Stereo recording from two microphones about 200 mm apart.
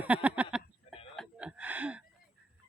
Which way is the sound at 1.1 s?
Centre (ahead or behind).